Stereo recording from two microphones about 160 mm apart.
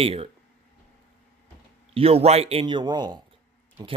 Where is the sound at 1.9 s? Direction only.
40° right (ahead or behind).